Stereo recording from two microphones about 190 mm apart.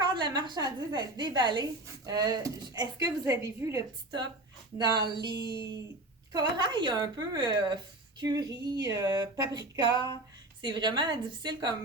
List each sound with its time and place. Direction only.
0.0 s a woman's voice: 25° right (ahead or behind)